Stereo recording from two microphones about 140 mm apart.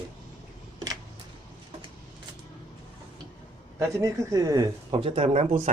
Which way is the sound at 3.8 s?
20° right (ahead or behind).